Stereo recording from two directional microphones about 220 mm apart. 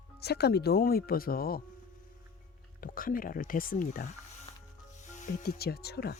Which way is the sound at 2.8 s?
40° left (ahead or behind).